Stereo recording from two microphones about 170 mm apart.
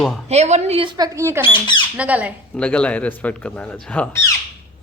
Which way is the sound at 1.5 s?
30° left (ahead or behind).